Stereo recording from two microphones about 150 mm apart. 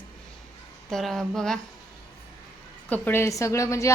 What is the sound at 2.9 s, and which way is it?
A woman's voice, 15° left (ahead or behind).